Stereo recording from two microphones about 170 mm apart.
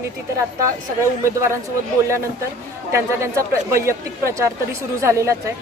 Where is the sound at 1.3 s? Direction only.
15° right (ahead or behind).